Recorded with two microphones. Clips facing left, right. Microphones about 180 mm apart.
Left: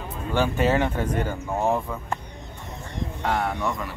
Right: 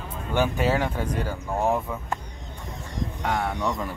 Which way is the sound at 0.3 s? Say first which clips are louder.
Left 1 dB; 10° right (ahead or behind).